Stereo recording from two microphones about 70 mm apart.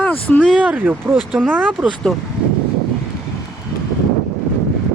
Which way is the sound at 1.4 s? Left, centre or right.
Centre.